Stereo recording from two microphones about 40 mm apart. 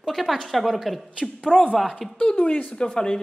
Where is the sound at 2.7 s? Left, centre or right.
Centre.